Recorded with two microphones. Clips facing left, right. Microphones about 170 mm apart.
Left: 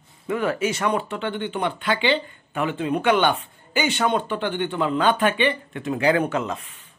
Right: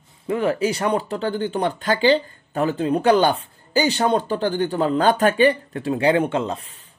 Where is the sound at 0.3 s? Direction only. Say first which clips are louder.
Right 3 dB; 30° right (ahead or behind).